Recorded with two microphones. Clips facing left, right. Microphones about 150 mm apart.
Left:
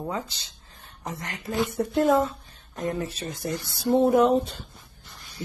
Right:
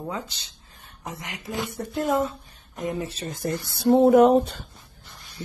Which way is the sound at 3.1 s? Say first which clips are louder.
Right 2 dB; 40° right (ahead or behind).